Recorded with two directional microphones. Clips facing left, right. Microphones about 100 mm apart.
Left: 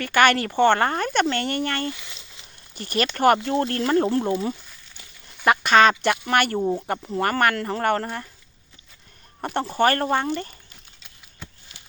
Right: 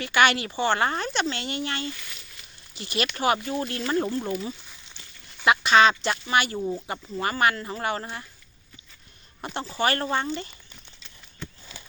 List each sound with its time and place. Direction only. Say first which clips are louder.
0.0 s speech: left 3 dB; 50° left (ahead or behind)
1.9 s a sound: left 4 dB; 20° left (ahead or behind)
2.7 s speech: left 4 dB; 45° left (ahead or behind)
4.2 s speech: left 6 dB; 30° left (ahead or behind)
5.5 s speech: left 2 dB; 50° left (ahead or behind)
9.4 s speech: left 6 dB; 55° left (ahead or behind)